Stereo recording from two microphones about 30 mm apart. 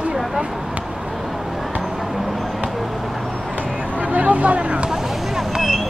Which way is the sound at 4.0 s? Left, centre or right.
Right.